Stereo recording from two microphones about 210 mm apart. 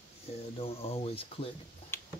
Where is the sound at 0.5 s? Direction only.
30° left (ahead or behind).